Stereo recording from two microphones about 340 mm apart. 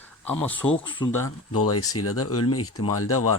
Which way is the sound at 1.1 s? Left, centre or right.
Left.